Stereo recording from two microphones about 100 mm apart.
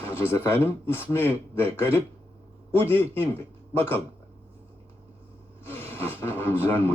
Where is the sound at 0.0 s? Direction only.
25° left (ahead or behind).